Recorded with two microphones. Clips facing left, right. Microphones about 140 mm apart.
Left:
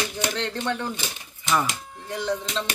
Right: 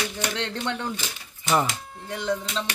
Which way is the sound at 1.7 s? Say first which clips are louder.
Left 1 dB; 15° left (ahead or behind).